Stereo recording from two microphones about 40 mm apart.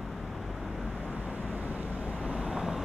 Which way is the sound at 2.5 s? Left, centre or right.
Centre.